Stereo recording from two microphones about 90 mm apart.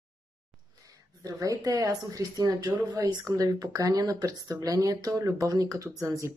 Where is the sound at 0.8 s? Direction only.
40° right (ahead or behind).